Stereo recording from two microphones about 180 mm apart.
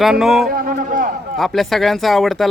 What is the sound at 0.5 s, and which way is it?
Speech, 50° right (ahead or behind).